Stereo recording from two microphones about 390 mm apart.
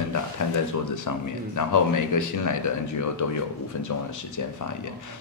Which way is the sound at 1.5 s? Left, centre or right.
Left.